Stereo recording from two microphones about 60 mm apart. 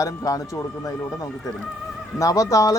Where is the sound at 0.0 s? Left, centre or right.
Left.